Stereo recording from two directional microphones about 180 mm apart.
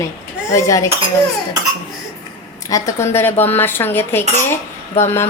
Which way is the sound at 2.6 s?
20° left (ahead or behind).